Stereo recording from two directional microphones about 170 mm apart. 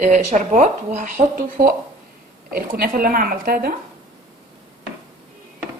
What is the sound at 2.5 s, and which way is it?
Speech, 60° right (ahead or behind).